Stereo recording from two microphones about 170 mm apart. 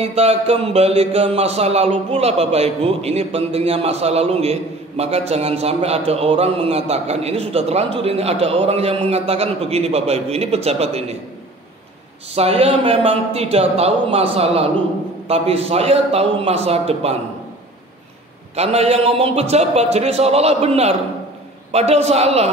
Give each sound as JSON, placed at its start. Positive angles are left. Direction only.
{"t": 0.0, "sound": "speech", "side_deg": -35}
{"t": 12.4, "sound": "speech", "side_deg": -35}
{"t": 18.6, "sound": "speech", "side_deg": -35}